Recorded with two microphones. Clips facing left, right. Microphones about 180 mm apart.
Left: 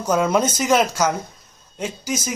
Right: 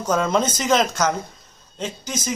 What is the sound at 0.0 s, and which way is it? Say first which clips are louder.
Speech: left 2 dB; 10° left (ahead or behind).